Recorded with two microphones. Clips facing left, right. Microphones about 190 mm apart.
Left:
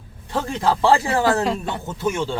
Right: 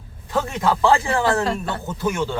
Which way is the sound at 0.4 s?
30° left (ahead or behind).